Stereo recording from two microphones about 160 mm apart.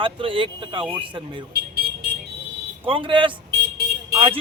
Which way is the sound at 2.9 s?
35° right (ahead or behind).